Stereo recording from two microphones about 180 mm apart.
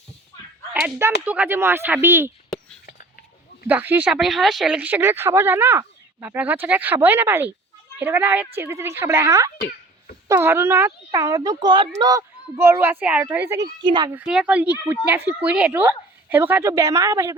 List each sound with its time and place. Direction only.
0.7 s speech: 5° right (ahead or behind)
2.5 s a sound: centre (ahead or behind)
3.7 s speech: 10° right (ahead or behind)
9.6 s babbling: 55° left (ahead or behind)
10.2 s speech: 15° right (ahead or behind)
13.8 s a child's voice: 25° right (ahead or behind)
14.1 s speech: 5° right (ahead or behind)